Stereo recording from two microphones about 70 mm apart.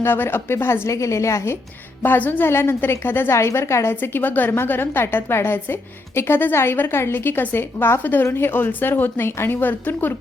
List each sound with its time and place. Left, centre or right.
0.0 s a woman's voice: left
2.0 s a woman's voice: left